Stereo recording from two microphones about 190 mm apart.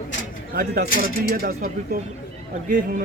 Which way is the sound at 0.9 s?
50° left (ahead or behind).